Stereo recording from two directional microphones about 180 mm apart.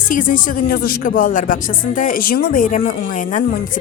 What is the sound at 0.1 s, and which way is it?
Speech, 45° left (ahead or behind).